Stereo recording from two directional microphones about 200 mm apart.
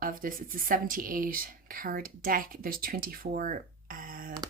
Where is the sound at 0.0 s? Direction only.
45° right (ahead or behind).